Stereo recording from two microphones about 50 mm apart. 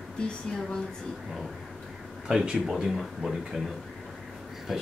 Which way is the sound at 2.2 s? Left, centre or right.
Centre.